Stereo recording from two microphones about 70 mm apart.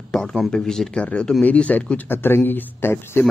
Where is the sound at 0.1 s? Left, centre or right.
Centre; by 3.3 s left.